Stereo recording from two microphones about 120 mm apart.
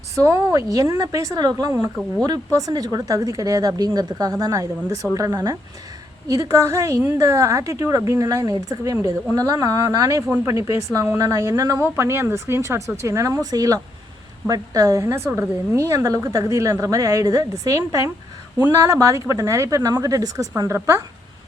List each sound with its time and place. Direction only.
0.2 s speech: 25° right (ahead or behind)